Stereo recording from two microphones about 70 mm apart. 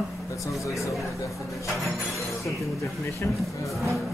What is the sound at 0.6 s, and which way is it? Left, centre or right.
Speech, left.